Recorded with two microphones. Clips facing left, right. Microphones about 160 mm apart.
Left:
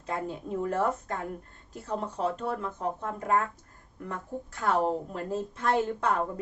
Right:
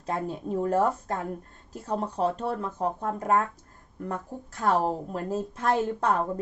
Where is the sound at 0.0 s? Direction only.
40° right (ahead or behind).